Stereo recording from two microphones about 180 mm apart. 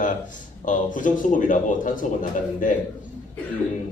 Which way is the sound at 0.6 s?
45° left (ahead or behind).